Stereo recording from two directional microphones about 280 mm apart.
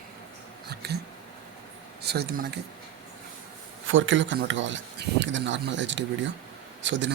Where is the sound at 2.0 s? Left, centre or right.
Right.